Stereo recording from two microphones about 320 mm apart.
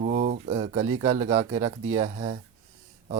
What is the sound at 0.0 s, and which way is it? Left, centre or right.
A man's voice, right.